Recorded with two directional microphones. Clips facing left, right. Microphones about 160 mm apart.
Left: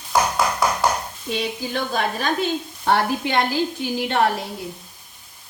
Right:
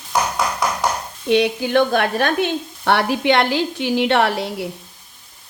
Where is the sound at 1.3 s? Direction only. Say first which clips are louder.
Right 10 dB; 70° right (ahead or behind).